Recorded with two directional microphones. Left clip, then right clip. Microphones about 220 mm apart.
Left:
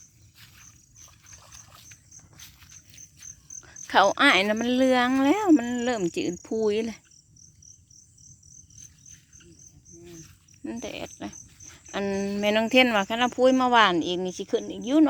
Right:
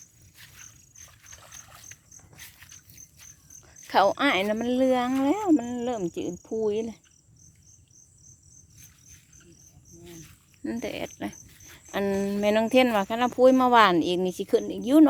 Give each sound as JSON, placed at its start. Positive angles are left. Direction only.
{"t": 0.3, "sound": "a sound", "side_deg": -15}
{"t": 1.4, "sound": "dog", "side_deg": 25}
{"t": 1.9, "sound": "a sound", "side_deg": -10}
{"t": 3.6, "sound": "speech", "side_deg": 5}
{"t": 8.8, "sound": "cricket", "side_deg": -10}
{"t": 10.0, "sound": "cricket", "side_deg": -5}
{"t": 10.6, "sound": "speech", "side_deg": -10}